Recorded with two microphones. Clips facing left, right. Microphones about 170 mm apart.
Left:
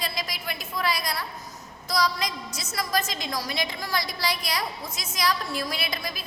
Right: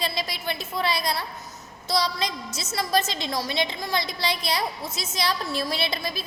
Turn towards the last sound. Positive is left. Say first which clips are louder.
# right 4 dB
turn(degrees=-30)  # may be behind; listen again after turning